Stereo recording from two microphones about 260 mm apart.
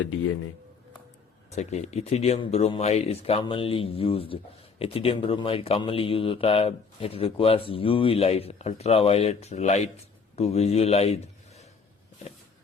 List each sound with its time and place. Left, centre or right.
1.5 s a man's voice: left